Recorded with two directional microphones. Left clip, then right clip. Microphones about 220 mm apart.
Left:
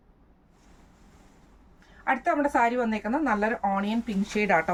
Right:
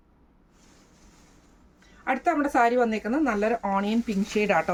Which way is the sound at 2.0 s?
10° left (ahead or behind).